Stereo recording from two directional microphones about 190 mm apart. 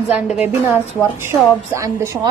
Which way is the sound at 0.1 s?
5° right (ahead or behind).